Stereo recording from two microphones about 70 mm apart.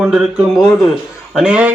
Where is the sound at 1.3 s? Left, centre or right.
Centre.